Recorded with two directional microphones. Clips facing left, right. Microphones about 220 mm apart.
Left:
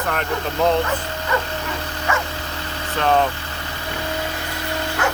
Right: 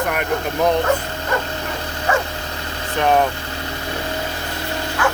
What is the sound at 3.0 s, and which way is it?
Speech, 15° right (ahead or behind).